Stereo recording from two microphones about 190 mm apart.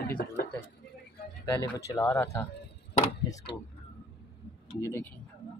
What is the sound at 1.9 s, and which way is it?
Speech, 15° left (ahead or behind).